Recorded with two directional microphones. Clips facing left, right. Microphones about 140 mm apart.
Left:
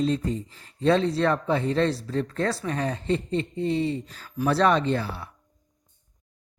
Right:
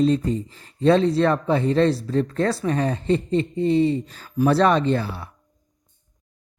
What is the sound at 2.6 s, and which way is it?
Speech, 35° right (ahead or behind).